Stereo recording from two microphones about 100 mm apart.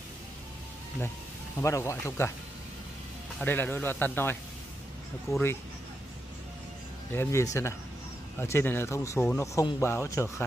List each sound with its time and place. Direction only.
1.6 s speech: 30° left (ahead or behind)
3.4 s speech: 20° left (ahead or behind)
7.2 s speech: 30° left (ahead or behind)